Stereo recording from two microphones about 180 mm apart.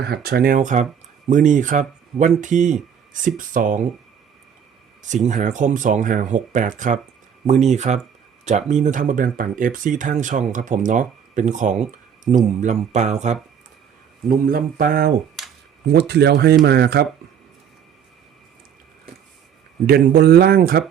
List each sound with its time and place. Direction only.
0.0 s speech: 60° right (ahead or behind)
5.0 s speech: 40° right (ahead or behind)
14.3 s speech: 55° right (ahead or behind)
15.9 s speech: 65° right (ahead or behind)
19.9 s speech: 60° right (ahead or behind)